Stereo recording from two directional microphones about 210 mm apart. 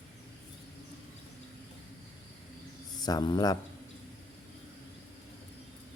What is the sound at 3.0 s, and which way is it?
Speech, 20° left (ahead or behind).